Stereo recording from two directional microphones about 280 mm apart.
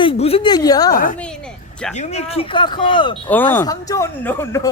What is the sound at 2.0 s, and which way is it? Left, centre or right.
Speech, left.